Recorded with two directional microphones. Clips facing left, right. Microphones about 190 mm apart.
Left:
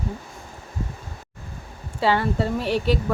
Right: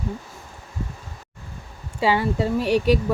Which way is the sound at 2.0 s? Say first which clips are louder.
Even; 10° right (ahead or behind).